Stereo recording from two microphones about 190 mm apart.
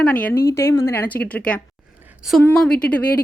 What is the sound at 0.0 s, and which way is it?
Speech, 10° left (ahead or behind).